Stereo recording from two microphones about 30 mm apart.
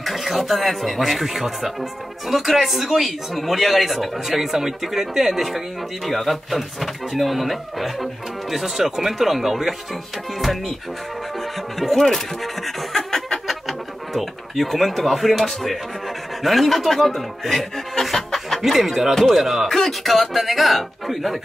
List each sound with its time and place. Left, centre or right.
0.0 s speech: centre
10.4 s speech: centre
11.9 s speech: centre
12.6 s snicker: centre
13.5 s speech: centre
18.0 s music: centre
18.6 s speech: centre
19.7 s speech: centre